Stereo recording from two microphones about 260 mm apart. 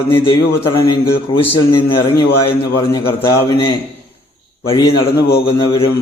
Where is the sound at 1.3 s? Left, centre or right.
Centre.